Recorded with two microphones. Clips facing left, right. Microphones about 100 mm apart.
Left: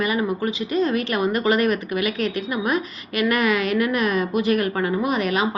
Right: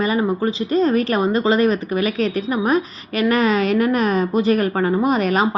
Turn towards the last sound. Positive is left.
turn(degrees=-40)  # may be behind; listen again after turning